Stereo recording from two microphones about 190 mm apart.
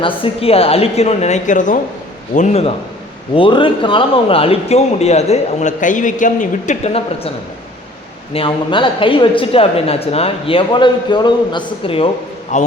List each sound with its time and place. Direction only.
0.0 s a man's voice: 30° left (ahead or behind)
12.5 s a man's voice: 40° left (ahead or behind)